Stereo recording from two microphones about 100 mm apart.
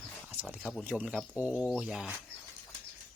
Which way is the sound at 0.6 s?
5° right (ahead or behind).